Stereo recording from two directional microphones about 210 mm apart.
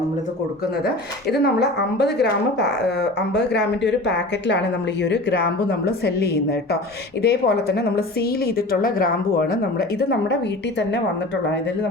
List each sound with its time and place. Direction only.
0.9 s a woman's voice: 50° left (ahead or behind)